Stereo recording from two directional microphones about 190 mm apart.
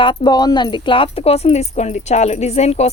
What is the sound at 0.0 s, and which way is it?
Speech, 25° left (ahead or behind).